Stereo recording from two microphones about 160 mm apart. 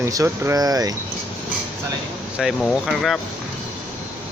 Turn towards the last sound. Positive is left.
turn(degrees=0)  # may be behind; listen again after turning